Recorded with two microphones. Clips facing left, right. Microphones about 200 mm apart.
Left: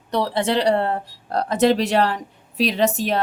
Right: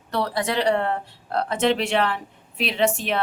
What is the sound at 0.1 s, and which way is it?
Speech, 25° left (ahead or behind).